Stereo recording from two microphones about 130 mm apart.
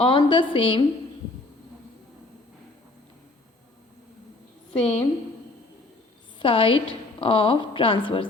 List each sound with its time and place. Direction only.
0.0 s a woman's voice: 40° left (ahead or behind)
4.8 s a woman's voice: 50° left (ahead or behind)
6.4 s a woman's voice: 45° left (ahead or behind)